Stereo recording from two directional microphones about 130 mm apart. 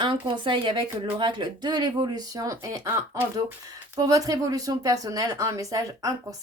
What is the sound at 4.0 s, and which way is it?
Speech, 30° right (ahead or behind).